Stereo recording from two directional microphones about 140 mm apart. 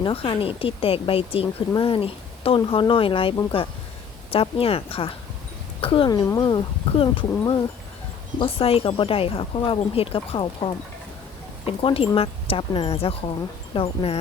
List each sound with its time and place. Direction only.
0.0 s speech: 40° left (ahead or behind)
6.1 s speech: 25° left (ahead or behind)
6.4 s speech: 40° left (ahead or behind)